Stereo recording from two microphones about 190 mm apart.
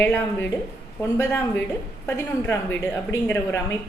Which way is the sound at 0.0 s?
10° left (ahead or behind).